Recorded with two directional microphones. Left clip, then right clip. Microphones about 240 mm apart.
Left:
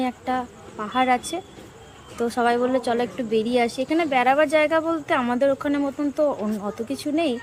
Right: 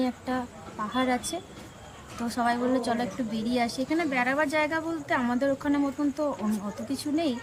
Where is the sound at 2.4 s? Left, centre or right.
Centre.